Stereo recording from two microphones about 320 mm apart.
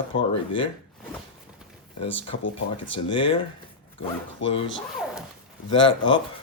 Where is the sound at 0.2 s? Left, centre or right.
Centre.